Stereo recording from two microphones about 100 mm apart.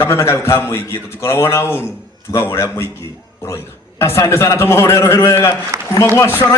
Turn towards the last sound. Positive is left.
turn(degrees=25)  # may be behind; listen again after turning